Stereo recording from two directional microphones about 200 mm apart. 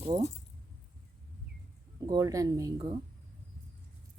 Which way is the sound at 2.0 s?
15° right (ahead or behind).